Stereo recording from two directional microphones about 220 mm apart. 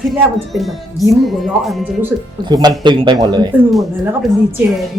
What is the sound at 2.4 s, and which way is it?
A man's voice, 20° right (ahead or behind).